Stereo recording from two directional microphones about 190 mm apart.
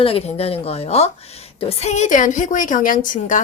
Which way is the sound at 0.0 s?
30° left (ahead or behind).